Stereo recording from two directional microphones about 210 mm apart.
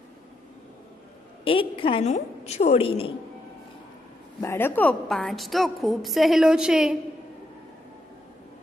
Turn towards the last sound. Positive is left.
turn(degrees=-5)  # may be behind; listen again after turning